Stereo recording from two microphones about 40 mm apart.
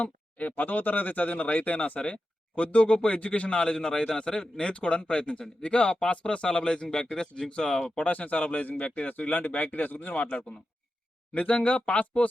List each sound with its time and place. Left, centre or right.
0.0 s a man's voice: left; by 7.9 s centre
7.9 s speech: left
10.2 s a man's voice: left
11.3 s speech: left